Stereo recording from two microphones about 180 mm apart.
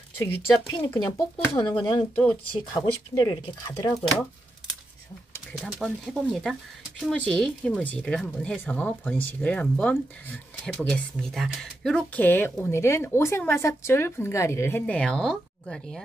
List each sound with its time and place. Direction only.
0.2 s speech: 10° left (ahead or behind)
0.8 s speech: 25° left (ahead or behind)
5.6 s speech: centre (ahead or behind)